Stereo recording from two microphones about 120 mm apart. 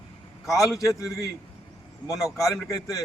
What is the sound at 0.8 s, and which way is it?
Speech, 25° left (ahead or behind).